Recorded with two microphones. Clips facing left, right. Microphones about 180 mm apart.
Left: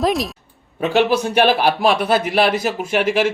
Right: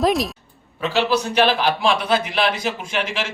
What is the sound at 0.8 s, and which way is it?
A man's voice, 50° left (ahead or behind).